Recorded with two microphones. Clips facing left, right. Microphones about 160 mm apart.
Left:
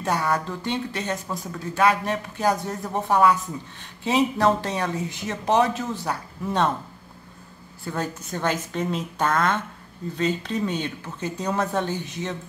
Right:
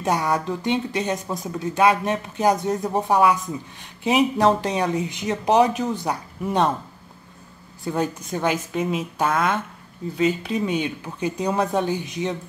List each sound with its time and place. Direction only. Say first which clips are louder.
0.0 s speech: right 2 dB; 15° right (ahead or behind)
7.8 s speech: right 5 dB; 15° right (ahead or behind)